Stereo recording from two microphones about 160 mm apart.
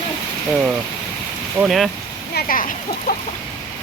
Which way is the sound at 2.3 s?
60° left (ahead or behind).